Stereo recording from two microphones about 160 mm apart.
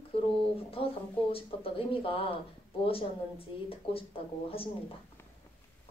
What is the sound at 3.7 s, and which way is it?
Speech, 35° left (ahead or behind).